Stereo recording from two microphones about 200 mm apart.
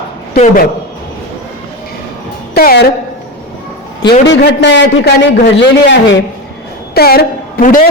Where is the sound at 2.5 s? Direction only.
50° left (ahead or behind).